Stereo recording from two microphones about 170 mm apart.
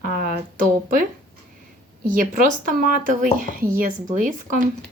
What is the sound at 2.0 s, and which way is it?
Speech, 55° right (ahead or behind).